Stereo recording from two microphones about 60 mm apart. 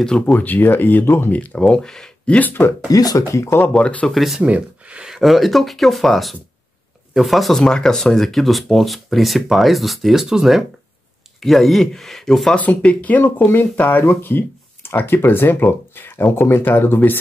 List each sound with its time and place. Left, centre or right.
0.0 s speech: centre
0.4 s speech: left
1.3 s speech: left
1.6 s speech: centre
2.3 s speech: left
2.9 s speech: left
3.3 s speech: left
3.7 s speech: centre
4.1 s speech: centre
4.4 s speech: right
5.1 s speech: centre
12.5 s speech: left